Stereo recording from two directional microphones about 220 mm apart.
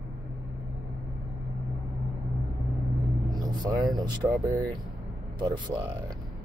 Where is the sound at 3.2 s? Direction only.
15° right (ahead or behind).